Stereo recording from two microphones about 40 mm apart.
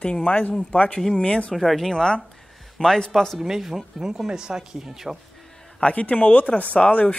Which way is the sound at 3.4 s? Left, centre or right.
Centre.